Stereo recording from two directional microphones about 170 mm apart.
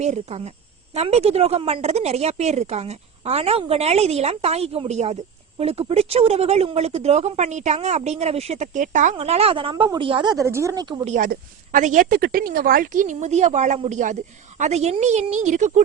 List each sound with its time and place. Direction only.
0.0 s a woman's voice: 40° right (ahead or behind)
9.1 s a woman's voice: 35° right (ahead or behind)
10.3 s speech: 15° right (ahead or behind)
11.0 s a woman's voice: 45° right (ahead or behind)